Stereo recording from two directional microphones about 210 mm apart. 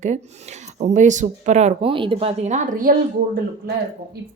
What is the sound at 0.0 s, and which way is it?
Speech, 35° right (ahead or behind).